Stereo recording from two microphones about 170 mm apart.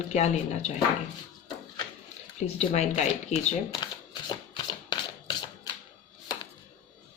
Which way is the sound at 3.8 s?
25° left (ahead or behind).